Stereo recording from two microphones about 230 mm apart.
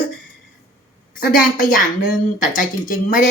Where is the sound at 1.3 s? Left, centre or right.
Left.